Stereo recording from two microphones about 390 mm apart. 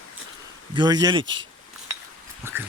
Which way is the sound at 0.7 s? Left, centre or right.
Centre.